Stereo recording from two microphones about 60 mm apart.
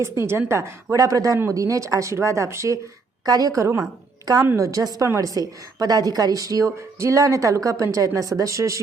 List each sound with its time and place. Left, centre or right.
0.0 s a woman's voice: right
3.2 s a woman's voice: right
4.5 s a woman's voice: right